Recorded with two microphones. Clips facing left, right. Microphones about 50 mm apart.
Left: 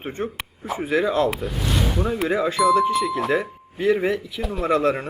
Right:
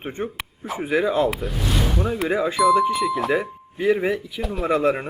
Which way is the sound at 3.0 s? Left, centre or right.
Centre.